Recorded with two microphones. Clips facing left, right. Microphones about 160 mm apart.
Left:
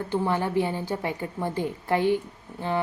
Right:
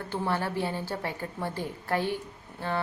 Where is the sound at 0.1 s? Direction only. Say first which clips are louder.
Left 4 dB; 15° left (ahead or behind).